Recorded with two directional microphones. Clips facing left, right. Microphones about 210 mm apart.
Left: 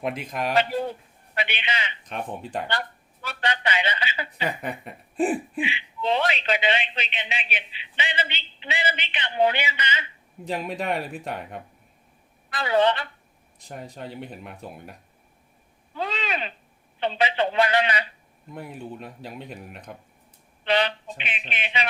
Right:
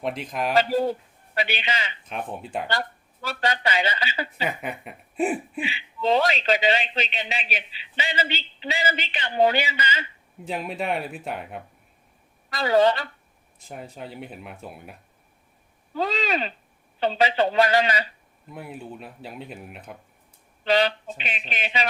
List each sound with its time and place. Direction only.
0.0 s speech: centre (ahead or behind)
0.5 s a man's voice: 40° right (ahead or behind)
4.4 s speech: 5° right (ahead or behind)
5.5 s a man's voice: 40° right (ahead or behind)
10.4 s speech: centre (ahead or behind)
12.5 s a man's voice: 40° right (ahead or behind)
14.2 s speech: 5° right (ahead or behind)
16.0 s a man's voice: 40° right (ahead or behind)
18.5 s speech: 5° right (ahead or behind)
20.7 s a man's voice: 40° right (ahead or behind)